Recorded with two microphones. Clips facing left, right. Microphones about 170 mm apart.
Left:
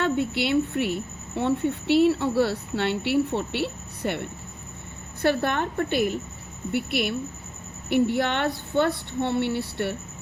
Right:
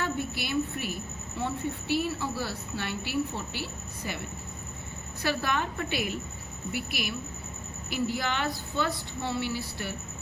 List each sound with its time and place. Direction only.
0.0 s speech: 70° left (ahead or behind); by 6.1 s 50° left (ahead or behind)
6.7 s speech: 60° left (ahead or behind)